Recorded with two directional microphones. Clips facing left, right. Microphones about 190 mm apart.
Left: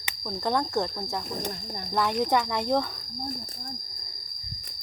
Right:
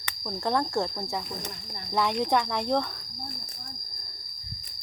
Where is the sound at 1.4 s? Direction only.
40° left (ahead or behind).